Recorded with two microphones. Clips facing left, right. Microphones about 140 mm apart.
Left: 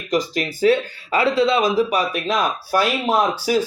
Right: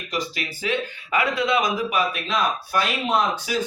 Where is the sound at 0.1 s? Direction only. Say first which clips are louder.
Left 8 dB; 40° left (ahead or behind).